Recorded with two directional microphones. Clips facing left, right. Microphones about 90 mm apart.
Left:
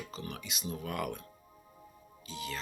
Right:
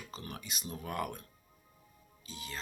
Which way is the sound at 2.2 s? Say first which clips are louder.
Left 5 dB; 35° right (ahead or behind).